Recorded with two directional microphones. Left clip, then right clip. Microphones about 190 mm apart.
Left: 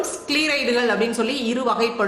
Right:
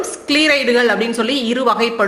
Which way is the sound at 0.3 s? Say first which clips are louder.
Right 7 dB; 35° right (ahead or behind).